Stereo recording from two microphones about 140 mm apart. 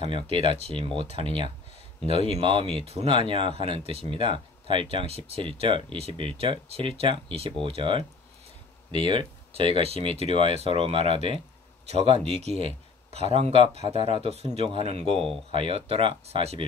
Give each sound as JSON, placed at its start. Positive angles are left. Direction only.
{"t": 0.4, "sound": "speech", "side_deg": -40}
{"t": 9.0, "sound": "speech", "side_deg": -35}
{"t": 9.8, "sound": "speech", "side_deg": -45}